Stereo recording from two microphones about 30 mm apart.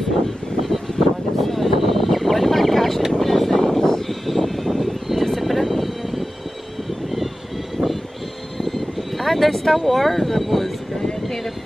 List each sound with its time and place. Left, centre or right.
0.9 s a sound: centre
3.1 s vehicle: centre
7.8 s vehicle: left
8.5 s vehicle: centre
11.0 s vehicle: centre